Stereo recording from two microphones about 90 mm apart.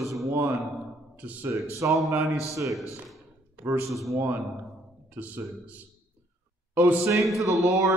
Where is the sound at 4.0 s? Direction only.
30° right (ahead or behind).